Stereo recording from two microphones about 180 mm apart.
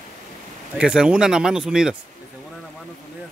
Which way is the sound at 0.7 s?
5° right (ahead or behind).